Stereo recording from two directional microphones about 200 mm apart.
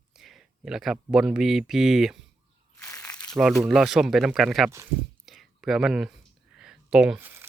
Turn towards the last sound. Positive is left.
turn(degrees=-10)  # may be behind; listen again after turning